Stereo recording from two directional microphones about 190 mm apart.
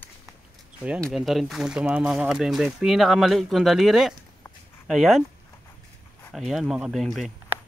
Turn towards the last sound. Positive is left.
turn(degrees=0)  # may be behind; listen again after turning